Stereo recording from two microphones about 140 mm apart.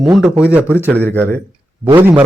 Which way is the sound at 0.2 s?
5° right (ahead or behind).